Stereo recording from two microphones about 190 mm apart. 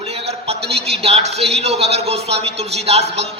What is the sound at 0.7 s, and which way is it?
A man's voice, 30° right (ahead or behind).